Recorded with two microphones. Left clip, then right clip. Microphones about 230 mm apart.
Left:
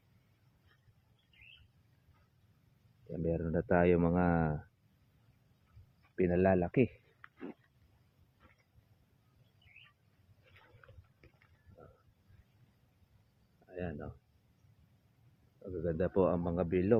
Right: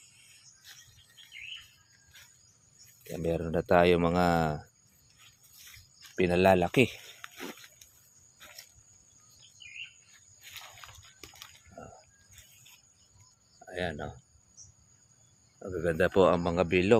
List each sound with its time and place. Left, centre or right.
3.1 s speech: centre
6.1 s speech: right
13.7 s speech: right
15.8 s a man's voice: right